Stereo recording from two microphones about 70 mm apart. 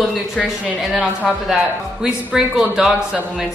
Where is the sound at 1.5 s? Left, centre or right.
Centre.